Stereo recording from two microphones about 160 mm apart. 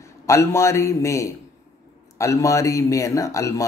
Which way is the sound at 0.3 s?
15° left (ahead or behind).